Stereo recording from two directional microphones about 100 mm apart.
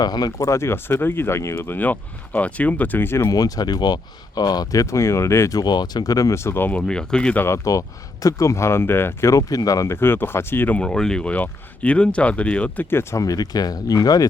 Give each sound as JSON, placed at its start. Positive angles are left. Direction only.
{"t": 0.0, "sound": "speech", "side_deg": 40}
{"t": 3.2, "sound": "speech", "side_deg": 40}
{"t": 7.4, "sound": "speech", "side_deg": 30}